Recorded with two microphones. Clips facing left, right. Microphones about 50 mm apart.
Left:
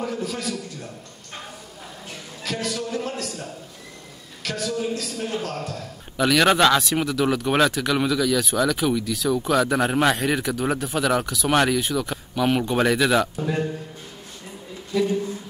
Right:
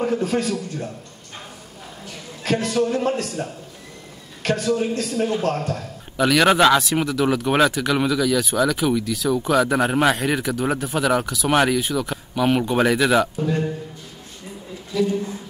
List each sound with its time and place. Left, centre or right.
0.0 s a man's voice: right
2.4 s a man's voice: right
4.4 s a man's voice: right
5.1 s speech: right
6.1 s speech: centre